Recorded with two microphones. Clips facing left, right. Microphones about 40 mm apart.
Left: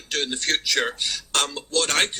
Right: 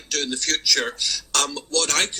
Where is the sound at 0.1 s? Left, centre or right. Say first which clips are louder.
Left 1 dB; left.